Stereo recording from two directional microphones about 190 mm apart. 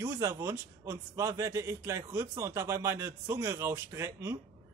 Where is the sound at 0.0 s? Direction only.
15° right (ahead or behind).